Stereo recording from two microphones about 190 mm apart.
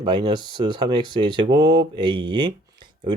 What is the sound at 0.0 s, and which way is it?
Speech, 25° right (ahead or behind).